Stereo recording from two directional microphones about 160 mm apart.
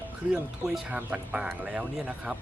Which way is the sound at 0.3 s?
5° right (ahead or behind).